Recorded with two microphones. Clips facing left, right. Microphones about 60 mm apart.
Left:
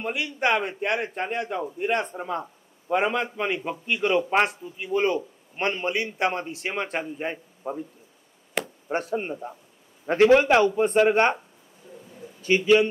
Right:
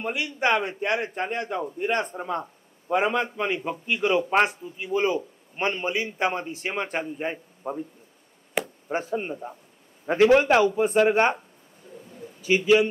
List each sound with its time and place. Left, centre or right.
0.0 s a man's voice: centre
8.6 s chop: centre
9.1 s a man's voice: centre
11.1 s speech: centre
12.2 s bird: centre
12.6 s speech: centre